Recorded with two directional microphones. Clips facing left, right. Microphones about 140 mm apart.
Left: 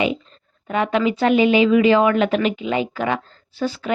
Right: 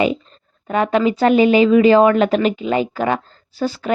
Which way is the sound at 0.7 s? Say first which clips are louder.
Right 3 dB; 40° right (ahead or behind).